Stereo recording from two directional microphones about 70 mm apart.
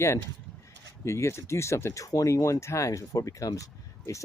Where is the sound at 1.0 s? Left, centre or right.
Left.